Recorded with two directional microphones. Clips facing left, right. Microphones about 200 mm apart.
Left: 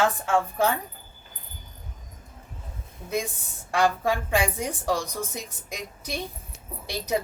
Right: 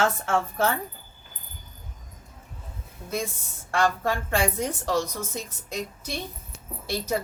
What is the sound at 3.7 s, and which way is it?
A woman's voice, 15° left (ahead or behind).